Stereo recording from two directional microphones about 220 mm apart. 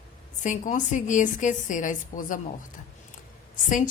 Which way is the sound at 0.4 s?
35° left (ahead or behind).